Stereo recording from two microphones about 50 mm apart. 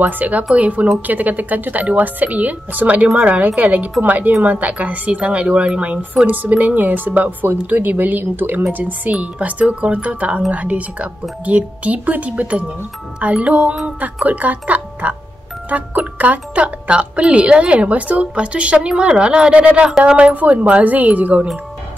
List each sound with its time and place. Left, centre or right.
0.0 s speech: right